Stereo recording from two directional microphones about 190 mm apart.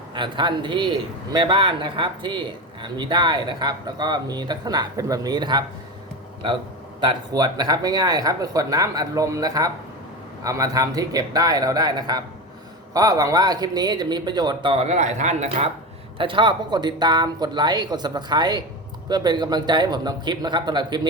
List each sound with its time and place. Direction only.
0.1 s a man's voice: 25° right (ahead or behind)
7.0 s a man's voice: 20° right (ahead or behind)
16.1 s a man's voice: 25° right (ahead or behind)